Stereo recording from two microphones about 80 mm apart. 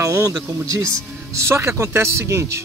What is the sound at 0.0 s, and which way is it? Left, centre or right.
Speech, right.